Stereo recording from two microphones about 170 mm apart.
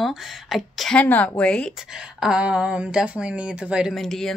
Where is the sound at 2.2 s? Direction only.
5° right (ahead or behind).